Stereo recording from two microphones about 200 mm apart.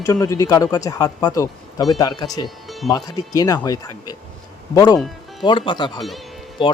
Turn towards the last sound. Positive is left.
turn(degrees=25)  # may be behind; listen again after turning